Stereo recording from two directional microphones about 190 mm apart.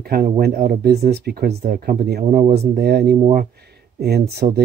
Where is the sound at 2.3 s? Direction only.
40° right (ahead or behind).